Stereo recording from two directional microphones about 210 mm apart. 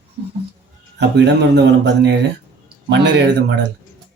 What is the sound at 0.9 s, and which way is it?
A man's voice, 55° right (ahead or behind).